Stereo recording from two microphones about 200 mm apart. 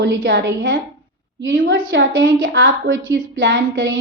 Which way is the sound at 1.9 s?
70° right (ahead or behind).